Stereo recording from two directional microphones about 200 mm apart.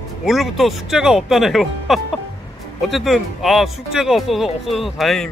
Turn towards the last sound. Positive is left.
turn(degrees=0)  # may be behind; listen again after turning